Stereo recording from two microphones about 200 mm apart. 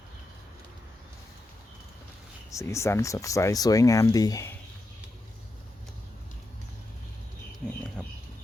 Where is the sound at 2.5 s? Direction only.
15° left (ahead or behind).